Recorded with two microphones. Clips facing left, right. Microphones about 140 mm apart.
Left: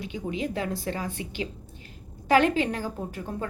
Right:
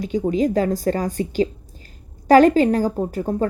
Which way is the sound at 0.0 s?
40° right (ahead or behind).